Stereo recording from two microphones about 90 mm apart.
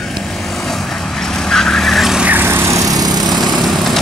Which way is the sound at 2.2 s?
20° right (ahead or behind).